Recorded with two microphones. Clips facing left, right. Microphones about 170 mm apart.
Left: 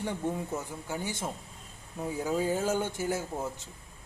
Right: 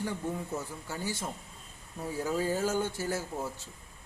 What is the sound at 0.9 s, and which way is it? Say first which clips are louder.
Speech: left 3 dB; 20° left (ahead or behind).